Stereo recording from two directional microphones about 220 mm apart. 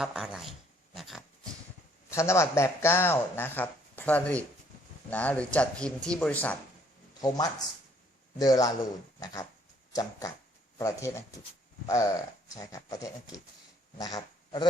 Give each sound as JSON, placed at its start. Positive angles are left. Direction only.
{"t": 0.0, "sound": "speech", "side_deg": -5}
{"t": 0.9, "sound": "pig", "side_deg": 0}
{"t": 2.0, "sound": "speech", "side_deg": 10}
{"t": 7.2, "sound": "speech", "side_deg": 15}